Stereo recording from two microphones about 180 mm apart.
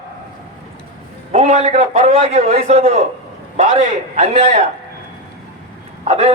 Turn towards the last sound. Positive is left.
turn(degrees=-40)  # may be behind; listen again after turning